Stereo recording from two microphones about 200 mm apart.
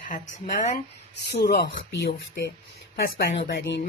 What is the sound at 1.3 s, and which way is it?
Speech, 55° left (ahead or behind).